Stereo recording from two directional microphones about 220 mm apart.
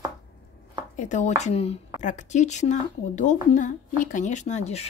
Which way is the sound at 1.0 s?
35° left (ahead or behind).